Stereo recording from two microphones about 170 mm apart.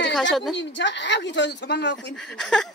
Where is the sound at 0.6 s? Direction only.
90° left.